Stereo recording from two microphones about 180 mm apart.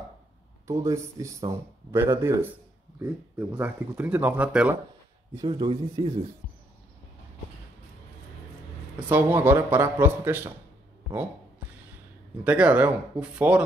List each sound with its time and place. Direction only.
0.7 s speech: 20° right (ahead or behind)
5.3 s speech: 25° right (ahead or behind)
9.1 s speech: 10° right (ahead or behind)
12.4 s speech: 5° right (ahead or behind)